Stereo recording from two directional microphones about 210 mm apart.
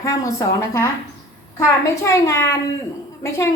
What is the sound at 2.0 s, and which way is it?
A woman's voice, 15° left (ahead or behind).